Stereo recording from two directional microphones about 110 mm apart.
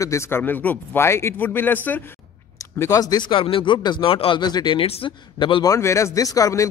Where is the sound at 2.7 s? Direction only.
30° left (ahead or behind).